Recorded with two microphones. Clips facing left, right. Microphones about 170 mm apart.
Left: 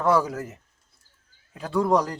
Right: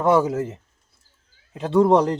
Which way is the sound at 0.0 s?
20° right (ahead or behind).